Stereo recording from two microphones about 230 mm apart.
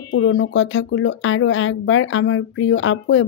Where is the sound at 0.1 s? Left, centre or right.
Left.